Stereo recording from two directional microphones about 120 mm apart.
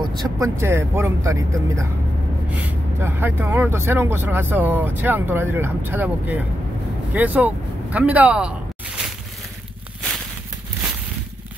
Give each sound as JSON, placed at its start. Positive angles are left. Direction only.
{"t": 0.0, "sound": "speech", "side_deg": -35}
{"t": 0.6, "sound": "speech", "side_deg": -20}
{"t": 3.0, "sound": "speech", "side_deg": -20}
{"t": 7.2, "sound": "vehicle", "side_deg": -15}